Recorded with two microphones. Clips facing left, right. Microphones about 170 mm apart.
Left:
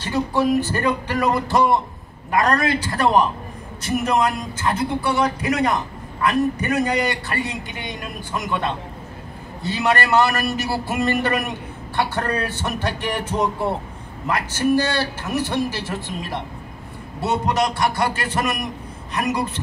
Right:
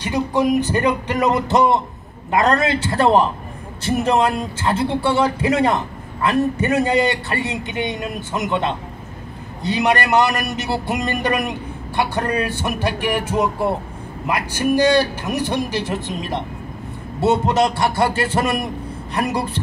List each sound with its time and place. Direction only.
0.0 s a woman's voice: 15° right (ahead or behind)